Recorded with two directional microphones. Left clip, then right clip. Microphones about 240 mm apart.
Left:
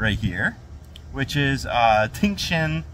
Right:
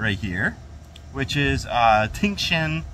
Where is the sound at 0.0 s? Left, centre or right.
Centre.